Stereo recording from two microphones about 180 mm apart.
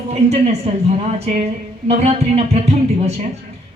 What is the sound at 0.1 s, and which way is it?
A man's voice, 35° right (ahead or behind).